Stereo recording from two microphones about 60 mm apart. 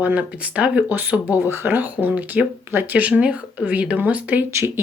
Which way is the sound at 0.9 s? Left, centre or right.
Right.